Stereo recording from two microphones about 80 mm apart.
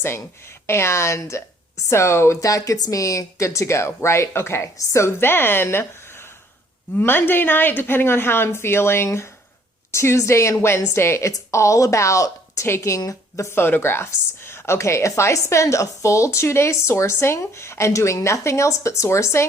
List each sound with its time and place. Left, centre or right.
0.7 s a woman's voice: left